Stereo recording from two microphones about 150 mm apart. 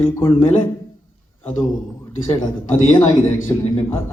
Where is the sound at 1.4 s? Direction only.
15° left (ahead or behind).